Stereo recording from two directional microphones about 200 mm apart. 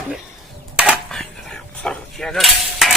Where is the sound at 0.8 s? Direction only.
Centre (ahead or behind).